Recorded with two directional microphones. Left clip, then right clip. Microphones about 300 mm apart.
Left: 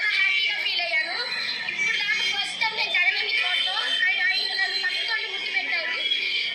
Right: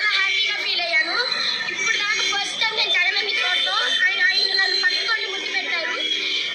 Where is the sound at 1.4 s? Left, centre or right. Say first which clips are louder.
Right 3 dB; right.